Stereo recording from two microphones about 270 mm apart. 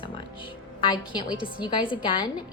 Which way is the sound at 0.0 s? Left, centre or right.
Centre.